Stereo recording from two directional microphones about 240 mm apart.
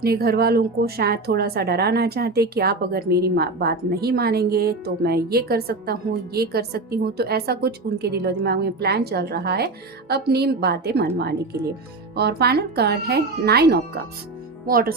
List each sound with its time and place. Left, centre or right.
0.0 s a woman's voice: right
12.1 s a woman's voice: right